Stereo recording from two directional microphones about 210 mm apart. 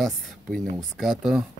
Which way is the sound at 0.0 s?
Centre (ahead or behind).